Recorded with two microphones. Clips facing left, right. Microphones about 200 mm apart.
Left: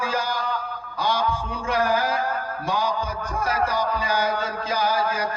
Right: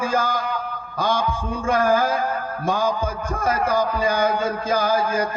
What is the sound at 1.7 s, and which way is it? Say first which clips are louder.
A man's voice: right 4 dB; 50° right (ahead or behind).